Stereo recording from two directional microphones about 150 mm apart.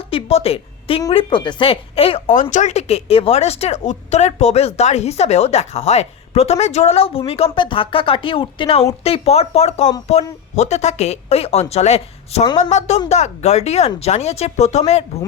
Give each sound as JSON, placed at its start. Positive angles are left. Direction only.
{"t": 0.1, "sound": "speech", "side_deg": 40}
{"t": 2.3, "sound": "speech", "side_deg": 60}